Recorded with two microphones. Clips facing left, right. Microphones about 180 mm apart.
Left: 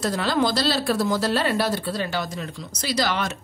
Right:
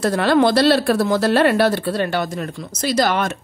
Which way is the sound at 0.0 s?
60° right (ahead or behind).